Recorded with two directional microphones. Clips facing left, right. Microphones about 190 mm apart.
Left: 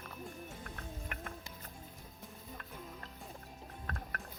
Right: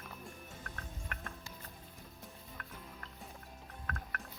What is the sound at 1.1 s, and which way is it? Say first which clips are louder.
Music: left 2 dB; 15° left (ahead or behind).